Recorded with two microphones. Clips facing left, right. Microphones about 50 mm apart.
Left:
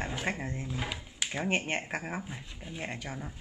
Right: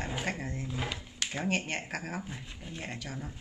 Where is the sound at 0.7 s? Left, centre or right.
Centre.